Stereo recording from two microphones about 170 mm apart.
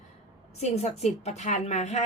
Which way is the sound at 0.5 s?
40° left (ahead or behind).